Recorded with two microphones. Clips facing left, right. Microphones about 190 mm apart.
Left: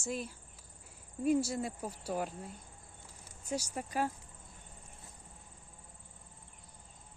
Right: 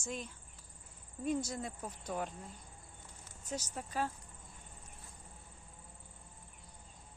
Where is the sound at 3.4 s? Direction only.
10° left (ahead or behind).